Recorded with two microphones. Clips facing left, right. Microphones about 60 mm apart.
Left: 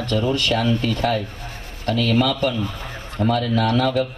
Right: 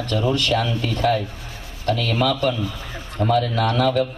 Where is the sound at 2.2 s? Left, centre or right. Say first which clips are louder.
Even; right.